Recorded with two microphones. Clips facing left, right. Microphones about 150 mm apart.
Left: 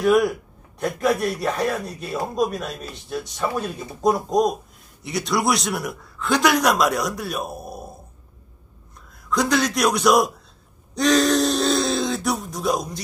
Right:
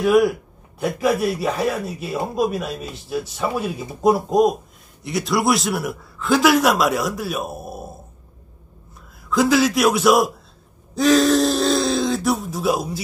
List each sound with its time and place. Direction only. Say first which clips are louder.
0.0 s a man's voice: right 2 dB; centre (ahead or behind)
9.3 s a man's voice: right 4 dB; 5° right (ahead or behind)
11.0 s a sound: right 3 dB; centre (ahead or behind)